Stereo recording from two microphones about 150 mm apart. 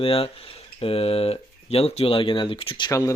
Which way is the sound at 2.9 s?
20° left (ahead or behind).